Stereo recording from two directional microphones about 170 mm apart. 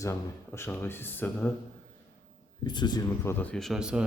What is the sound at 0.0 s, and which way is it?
Speech, 15° left (ahead or behind).